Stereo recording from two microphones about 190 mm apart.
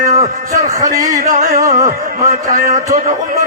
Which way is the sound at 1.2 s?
45° right (ahead or behind).